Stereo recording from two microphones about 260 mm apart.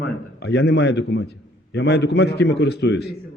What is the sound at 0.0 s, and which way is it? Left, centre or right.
A man's voice, left.